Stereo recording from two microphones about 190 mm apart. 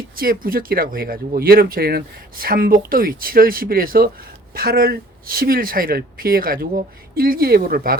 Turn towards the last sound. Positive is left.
turn(degrees=-50)  # may be behind; listen again after turning